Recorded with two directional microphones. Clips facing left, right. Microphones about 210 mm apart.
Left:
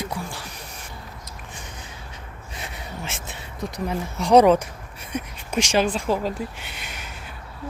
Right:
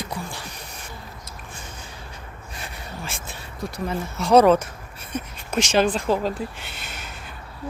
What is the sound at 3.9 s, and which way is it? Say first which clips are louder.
Speech: even; 15° left (ahead or behind).